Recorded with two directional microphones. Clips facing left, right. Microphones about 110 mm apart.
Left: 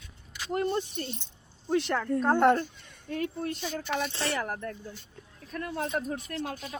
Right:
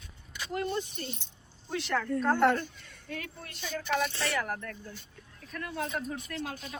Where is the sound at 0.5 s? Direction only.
45° left (ahead or behind).